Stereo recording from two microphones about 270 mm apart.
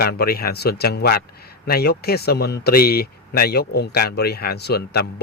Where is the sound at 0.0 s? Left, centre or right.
Left.